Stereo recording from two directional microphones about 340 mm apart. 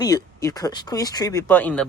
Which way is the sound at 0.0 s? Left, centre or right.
Centre.